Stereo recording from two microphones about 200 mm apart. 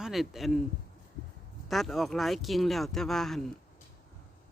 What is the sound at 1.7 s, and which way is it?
Speech, centre (ahead or behind).